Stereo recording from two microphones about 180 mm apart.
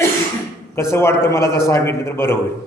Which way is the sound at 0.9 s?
15° left (ahead or behind).